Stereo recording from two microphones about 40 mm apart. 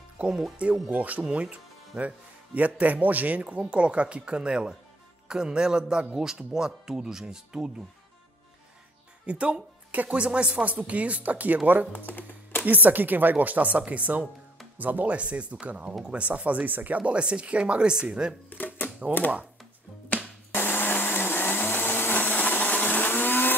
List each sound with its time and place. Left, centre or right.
0.2 s speech: right; by 7.7 s centre
9.2 s speech: right
9.8 s music: right
10.1 s speech: right
12.1 s speech: left
12.6 s speech: right
15.1 s speech: right
20.5 s blender: left